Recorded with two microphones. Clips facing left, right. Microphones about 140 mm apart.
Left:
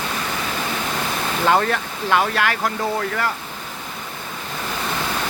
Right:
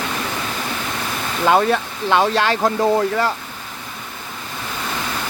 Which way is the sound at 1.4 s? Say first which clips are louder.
Right 3 dB; 20° right (ahead or behind).